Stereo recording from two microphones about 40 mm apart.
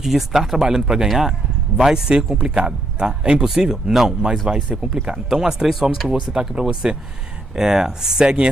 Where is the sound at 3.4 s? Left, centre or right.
Centre.